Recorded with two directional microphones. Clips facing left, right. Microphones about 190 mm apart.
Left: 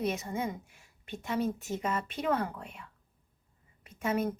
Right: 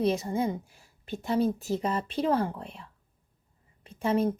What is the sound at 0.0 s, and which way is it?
Speech, 30° right (ahead or behind).